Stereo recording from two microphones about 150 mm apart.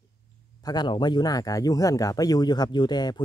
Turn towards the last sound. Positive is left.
turn(degrees=30)  # may be behind; listen again after turning